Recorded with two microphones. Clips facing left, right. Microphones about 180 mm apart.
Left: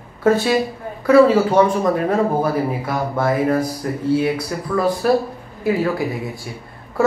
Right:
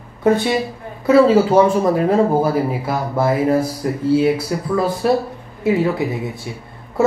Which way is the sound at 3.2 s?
25° right (ahead or behind).